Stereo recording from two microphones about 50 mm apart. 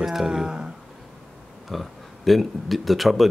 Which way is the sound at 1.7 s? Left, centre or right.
Centre.